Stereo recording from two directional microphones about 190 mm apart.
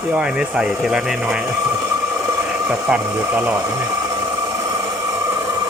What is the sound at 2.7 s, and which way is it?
Speech, 10° right (ahead or behind).